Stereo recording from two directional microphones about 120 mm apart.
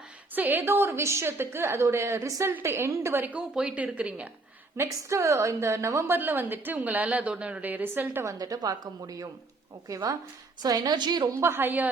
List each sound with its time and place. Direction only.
0.3 s a woman's voice: 15° right (ahead or behind)
4.8 s a woman's voice: 25° right (ahead or behind)
11.3 s a woman's voice: 20° right (ahead or behind)